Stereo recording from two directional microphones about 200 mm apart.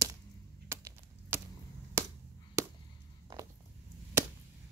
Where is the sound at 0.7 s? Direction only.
10° right (ahead or behind).